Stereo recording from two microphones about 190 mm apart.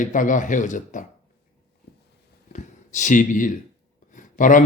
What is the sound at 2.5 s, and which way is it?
Speech, 40° left (ahead or behind).